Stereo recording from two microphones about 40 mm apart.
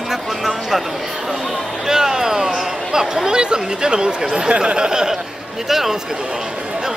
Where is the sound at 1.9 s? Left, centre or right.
Centre.